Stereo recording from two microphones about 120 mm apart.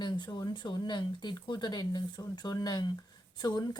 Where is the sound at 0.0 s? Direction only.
40° left (ahead or behind).